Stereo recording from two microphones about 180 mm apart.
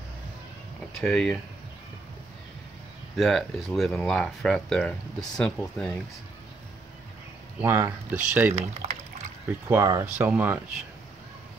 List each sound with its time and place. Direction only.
1.0 s speech: centre (ahead or behind)
3.2 s speech: centre (ahead or behind)
7.6 s speech: 15° right (ahead or behind)
8.8 s speech: 35° right (ahead or behind)
9.7 s speech: 15° right (ahead or behind)